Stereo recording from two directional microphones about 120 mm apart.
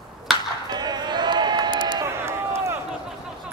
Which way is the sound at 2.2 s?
20° right (ahead or behind).